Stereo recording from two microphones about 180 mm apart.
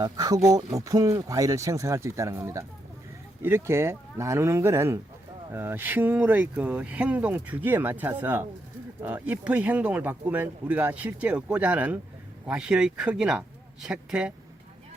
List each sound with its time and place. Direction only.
0.0 s speech: 20° right (ahead or behind); by 14.3 s 5° right (ahead or behind)